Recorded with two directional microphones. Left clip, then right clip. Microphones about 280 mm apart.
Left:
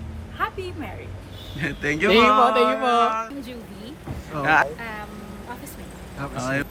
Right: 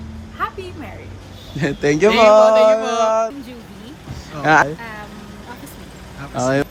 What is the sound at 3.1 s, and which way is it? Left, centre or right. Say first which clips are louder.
Speech: right 9 dB; centre.